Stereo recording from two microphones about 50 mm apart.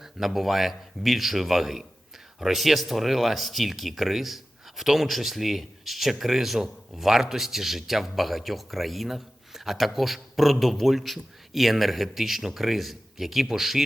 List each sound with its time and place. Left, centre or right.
0.0 s speech: centre